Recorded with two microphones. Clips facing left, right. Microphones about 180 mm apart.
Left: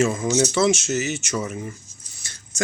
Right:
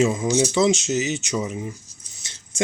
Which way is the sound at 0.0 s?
15° right (ahead or behind).